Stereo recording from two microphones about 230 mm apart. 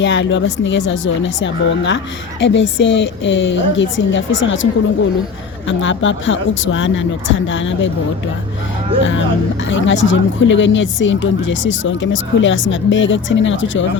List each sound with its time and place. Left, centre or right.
0.0 s a woman's voice: left
9.6 s a woman's voice: left